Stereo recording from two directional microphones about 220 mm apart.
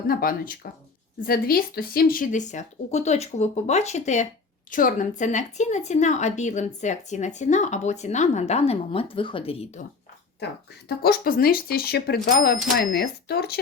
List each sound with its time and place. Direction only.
0.1 s speech: 40° left (ahead or behind)
10.8 s speech: 45° left (ahead or behind)